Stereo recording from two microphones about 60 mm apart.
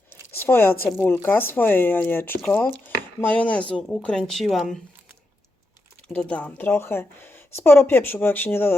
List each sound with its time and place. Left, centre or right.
0.3 s speech: left; by 4.8 s centre
6.1 s speech: left
6.6 s speech: left